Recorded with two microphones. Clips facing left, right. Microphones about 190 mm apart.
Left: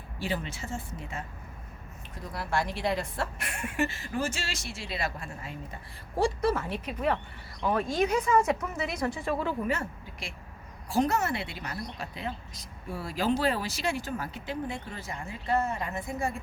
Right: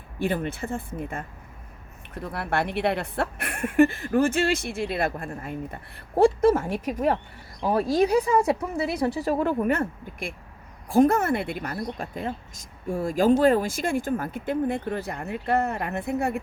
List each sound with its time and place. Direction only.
0.2 s a woman's voice: 55° right (ahead or behind)